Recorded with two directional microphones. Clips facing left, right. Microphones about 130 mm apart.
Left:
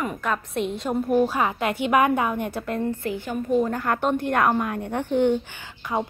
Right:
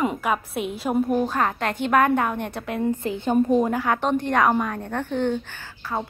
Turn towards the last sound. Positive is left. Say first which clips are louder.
# left 2 dB
turn(degrees=15)  # may be behind; listen again after turning